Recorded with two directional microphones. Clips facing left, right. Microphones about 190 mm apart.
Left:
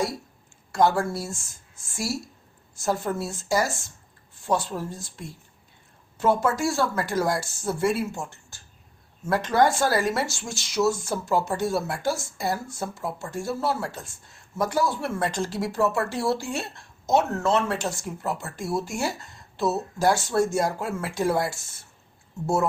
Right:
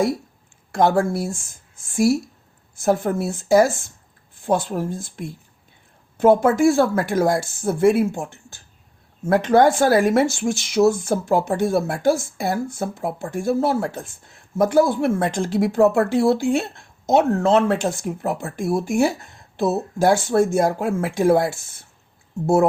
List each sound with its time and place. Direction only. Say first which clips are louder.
0.7 s a woman's voice: right 4 dB; 55° right (ahead or behind)